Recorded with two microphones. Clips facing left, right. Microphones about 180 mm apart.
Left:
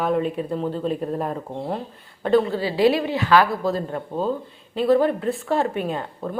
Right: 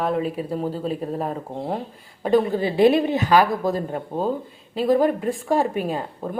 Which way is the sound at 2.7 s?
50° right (ahead or behind).